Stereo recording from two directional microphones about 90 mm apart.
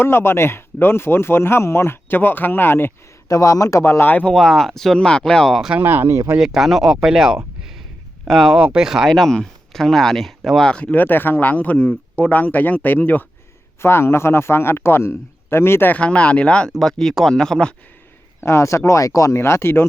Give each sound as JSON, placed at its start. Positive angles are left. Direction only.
{"t": 0.0, "sound": "a man's voice", "side_deg": 25}
{"t": 3.2, "sound": "speech", "side_deg": 40}
{"t": 4.3, "sound": "speech", "side_deg": 5}
{"t": 5.8, "sound": "speech", "side_deg": -25}
{"t": 6.3, "sound": "speech", "side_deg": -5}
{"t": 10.9, "sound": "a man's voice", "side_deg": 20}
{"t": 18.3, "sound": "speech", "side_deg": 30}